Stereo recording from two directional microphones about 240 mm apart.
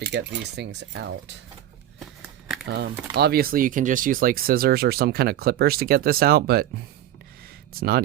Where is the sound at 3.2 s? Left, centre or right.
Right.